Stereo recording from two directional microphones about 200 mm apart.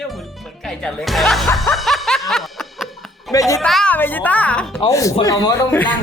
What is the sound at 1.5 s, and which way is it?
Music, centre (ahead or behind).